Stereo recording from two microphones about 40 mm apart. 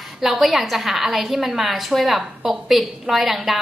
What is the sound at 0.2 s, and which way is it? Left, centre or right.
A woman's voice, centre.